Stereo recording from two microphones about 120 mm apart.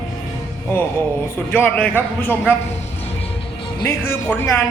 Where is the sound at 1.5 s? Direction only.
15° left (ahead or behind).